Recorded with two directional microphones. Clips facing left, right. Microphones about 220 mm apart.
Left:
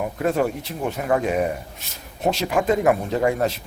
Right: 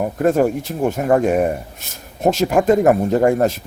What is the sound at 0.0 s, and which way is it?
Speech, 45° right (ahead or behind).